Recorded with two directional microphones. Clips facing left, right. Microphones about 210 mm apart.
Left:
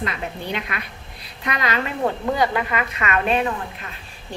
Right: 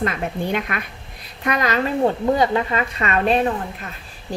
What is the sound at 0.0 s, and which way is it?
Speech, 50° right (ahead or behind).